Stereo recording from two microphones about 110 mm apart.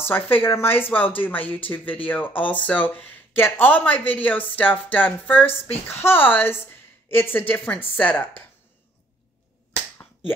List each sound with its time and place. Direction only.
0.1 s speech: 20° left (ahead or behind)